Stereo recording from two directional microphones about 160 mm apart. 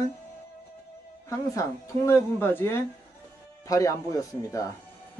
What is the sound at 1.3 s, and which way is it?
A woman's voice, 20° left (ahead or behind).